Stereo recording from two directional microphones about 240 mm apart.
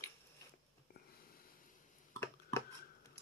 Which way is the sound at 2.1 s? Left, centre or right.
Centre.